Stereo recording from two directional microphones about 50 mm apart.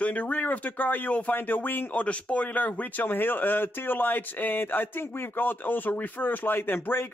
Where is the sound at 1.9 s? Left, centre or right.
Left.